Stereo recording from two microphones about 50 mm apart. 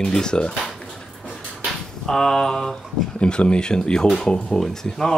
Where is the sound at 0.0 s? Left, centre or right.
Centre.